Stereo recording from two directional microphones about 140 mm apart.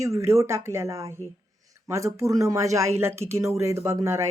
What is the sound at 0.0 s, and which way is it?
Speech, 20° right (ahead or behind).